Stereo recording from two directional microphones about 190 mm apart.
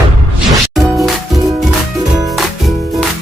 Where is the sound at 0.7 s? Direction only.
Centre (ahead or behind).